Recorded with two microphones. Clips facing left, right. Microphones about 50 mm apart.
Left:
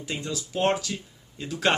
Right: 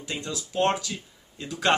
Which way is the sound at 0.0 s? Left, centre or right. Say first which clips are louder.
Left 1 dB; centre.